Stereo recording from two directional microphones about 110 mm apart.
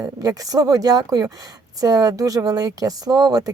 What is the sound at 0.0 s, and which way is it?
A woman's voice, 35° right (ahead or behind).